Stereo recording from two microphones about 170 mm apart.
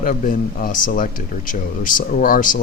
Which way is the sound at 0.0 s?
55° left (ahead or behind).